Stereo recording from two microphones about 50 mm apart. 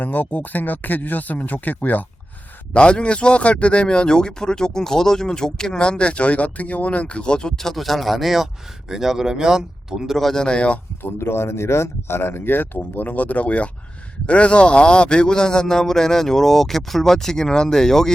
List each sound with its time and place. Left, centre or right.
0.0 s speech: left
2.7 s speech: left; by 10.2 s centre
10.2 s speech: centre
10.4 s speech: left
11.0 s speech: left; by 18.1 s centre